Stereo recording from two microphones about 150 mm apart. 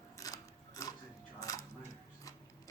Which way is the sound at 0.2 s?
25° left (ahead or behind).